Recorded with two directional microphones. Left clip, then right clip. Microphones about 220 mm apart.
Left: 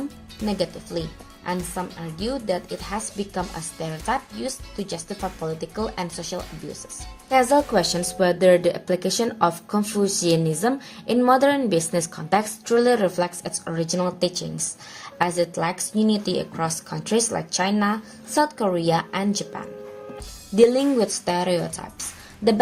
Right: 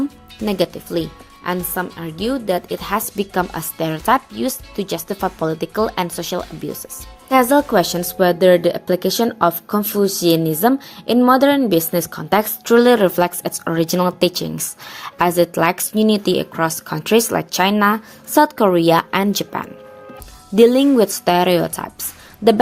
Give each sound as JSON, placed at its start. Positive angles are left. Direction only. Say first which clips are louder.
{"t": 0.4, "sound": "a woman's voice", "louder": "right 7 dB", "side_deg": -40}